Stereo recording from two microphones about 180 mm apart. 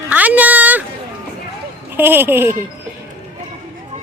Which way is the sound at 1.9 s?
10° right (ahead or behind).